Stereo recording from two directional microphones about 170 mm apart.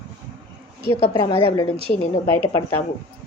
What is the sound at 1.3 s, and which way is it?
Speech, 35° left (ahead or behind).